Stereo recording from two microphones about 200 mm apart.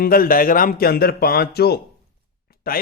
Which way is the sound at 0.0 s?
45° left (ahead or behind).